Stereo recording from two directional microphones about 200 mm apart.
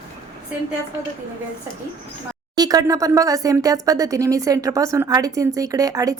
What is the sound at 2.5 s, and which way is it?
Speech, 20° right (ahead or behind).